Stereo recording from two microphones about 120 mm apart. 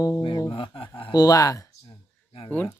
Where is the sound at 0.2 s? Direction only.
35° left (ahead or behind).